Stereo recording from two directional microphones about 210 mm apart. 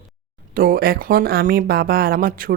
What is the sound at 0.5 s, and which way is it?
Speech, 45° right (ahead or behind).